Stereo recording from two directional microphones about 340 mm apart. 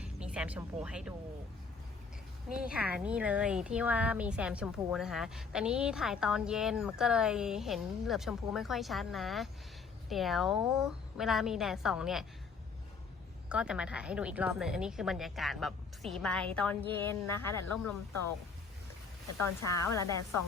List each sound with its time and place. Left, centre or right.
0.0 s a sound: centre
2.5 s a woman's voice: centre
13.5 s a woman's voice: centre
19.9 s a woman's voice: centre